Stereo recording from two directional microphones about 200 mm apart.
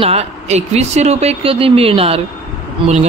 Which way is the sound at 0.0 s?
30° right (ahead or behind).